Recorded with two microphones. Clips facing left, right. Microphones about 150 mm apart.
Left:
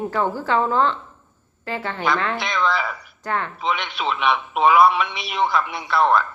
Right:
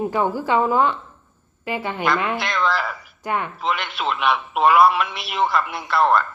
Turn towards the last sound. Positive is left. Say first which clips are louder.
# even
turn(degrees=0)  # may be behind; listen again after turning